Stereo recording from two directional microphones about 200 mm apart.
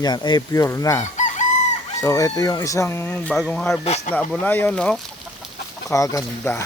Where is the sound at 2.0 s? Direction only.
15° left (ahead or behind).